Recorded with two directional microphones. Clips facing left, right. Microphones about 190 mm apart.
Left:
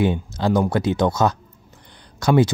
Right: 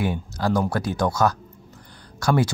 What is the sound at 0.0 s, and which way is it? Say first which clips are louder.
Speech: left 4 dB; 20° left (ahead or behind).